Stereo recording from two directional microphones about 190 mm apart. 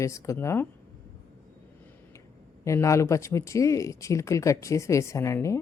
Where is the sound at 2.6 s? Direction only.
15° left (ahead or behind).